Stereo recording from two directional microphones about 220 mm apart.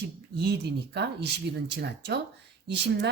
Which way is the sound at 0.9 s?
50° right (ahead or behind).